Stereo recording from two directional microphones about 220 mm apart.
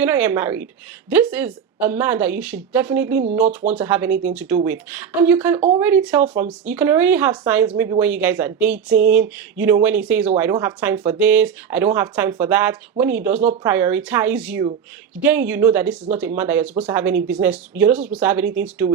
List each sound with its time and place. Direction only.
0.0 s speech: 10° right (ahead or behind)